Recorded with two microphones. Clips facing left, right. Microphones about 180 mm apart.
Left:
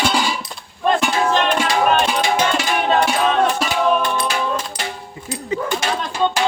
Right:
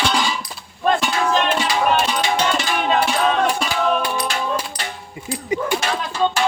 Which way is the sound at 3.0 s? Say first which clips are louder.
Left 2 dB; 10° right (ahead or behind).